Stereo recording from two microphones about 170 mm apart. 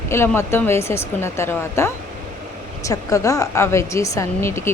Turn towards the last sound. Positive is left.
turn(degrees=15)  # may be behind; listen again after turning